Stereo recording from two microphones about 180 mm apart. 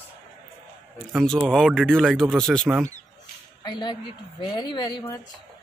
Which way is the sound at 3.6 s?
25° left (ahead or behind).